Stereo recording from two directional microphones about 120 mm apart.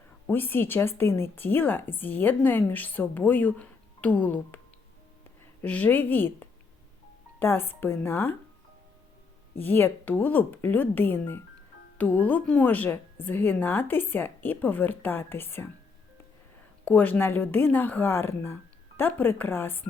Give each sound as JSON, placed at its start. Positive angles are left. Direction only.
{"t": 0.3, "sound": "a woman's voice", "side_deg": 15}
{"t": 5.6, "sound": "a woman's voice", "side_deg": 15}
{"t": 9.6, "sound": "a woman's voice", "side_deg": 15}
{"t": 16.8, "sound": "a woman's voice", "side_deg": 15}